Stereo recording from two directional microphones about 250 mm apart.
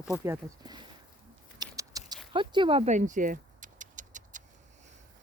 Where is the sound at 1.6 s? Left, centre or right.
Centre.